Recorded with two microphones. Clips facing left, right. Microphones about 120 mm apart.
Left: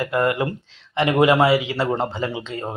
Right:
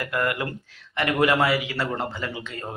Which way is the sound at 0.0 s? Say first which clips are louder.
Left 6 dB; 25° left (ahead or behind).